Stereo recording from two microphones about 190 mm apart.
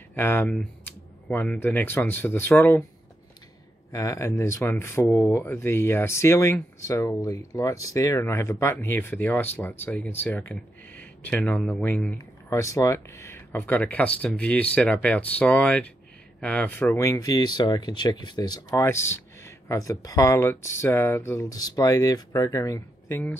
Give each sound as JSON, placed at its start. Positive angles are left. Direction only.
{"t": 0.1, "sound": "speech", "side_deg": 10}
{"t": 3.9, "sound": "speech", "side_deg": 15}